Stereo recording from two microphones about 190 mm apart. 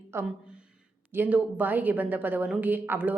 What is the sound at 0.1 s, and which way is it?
A woman's voice, 15° right (ahead or behind).